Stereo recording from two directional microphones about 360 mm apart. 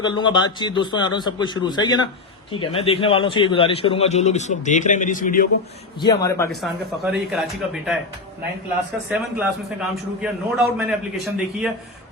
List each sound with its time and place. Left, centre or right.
0.0 s a man's voice: centre
6.0 s a man's voice: centre
9.0 s a man's voice: centre